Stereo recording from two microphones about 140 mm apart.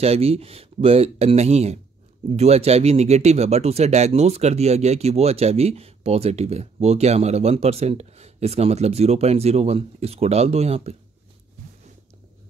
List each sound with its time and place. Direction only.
0.0 s speech: 45° right (ahead or behind)